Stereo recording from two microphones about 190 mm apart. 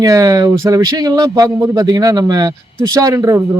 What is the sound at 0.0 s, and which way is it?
A man's voice, 20° right (ahead or behind).